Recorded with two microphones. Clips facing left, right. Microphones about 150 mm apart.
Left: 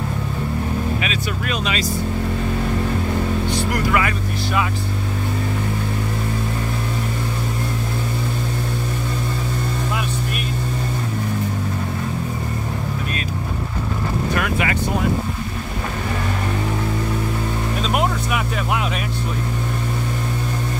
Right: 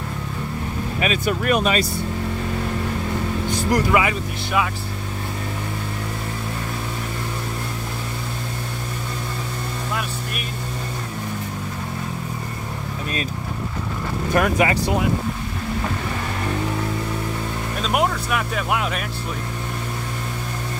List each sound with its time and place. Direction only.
1.0 s speech: 50° right (ahead or behind)
3.4 s vehicle: 45° right (ahead or behind)
14.3 s speech: 35° right (ahead or behind)
17.8 s speech: centre (ahead or behind)